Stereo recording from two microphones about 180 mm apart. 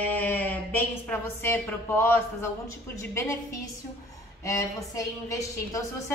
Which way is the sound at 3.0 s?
15° left (ahead or behind).